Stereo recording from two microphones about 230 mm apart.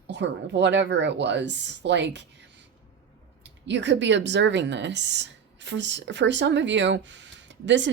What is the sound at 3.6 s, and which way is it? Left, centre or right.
Speech, right.